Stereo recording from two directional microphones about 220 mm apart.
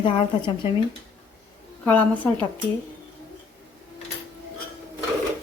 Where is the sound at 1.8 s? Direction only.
5° left (ahead or behind).